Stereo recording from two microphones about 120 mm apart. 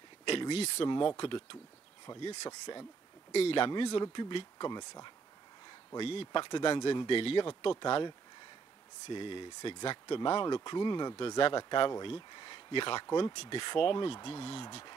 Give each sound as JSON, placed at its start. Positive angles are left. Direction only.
{"t": 0.2, "sound": "a sound", "side_deg": 45}
{"t": 0.5, "sound": "speech", "side_deg": 60}
{"t": 0.8, "sound": "speech", "side_deg": 45}
{"t": 2.1, "sound": "speech", "side_deg": 35}
{"t": 3.3, "sound": "speech", "side_deg": 60}
{"t": 3.5, "sound": "speech", "side_deg": 45}
{"t": 4.6, "sound": "speech", "side_deg": 35}
{"t": 5.9, "sound": "speech", "side_deg": 50}
{"t": 7.8, "sound": "speech", "side_deg": 35}
{"t": 9.1, "sound": "speech", "side_deg": 45}
{"t": 13.0, "sound": "speech", "side_deg": 30}
{"t": 13.3, "sound": "speech", "side_deg": 65}
{"t": 13.6, "sound": "speech", "side_deg": 45}